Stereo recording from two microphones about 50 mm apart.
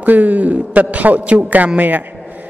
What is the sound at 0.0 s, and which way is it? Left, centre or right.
Mantra, right.